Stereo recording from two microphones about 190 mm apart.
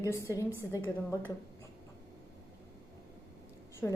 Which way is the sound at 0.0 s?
15° left (ahead or behind).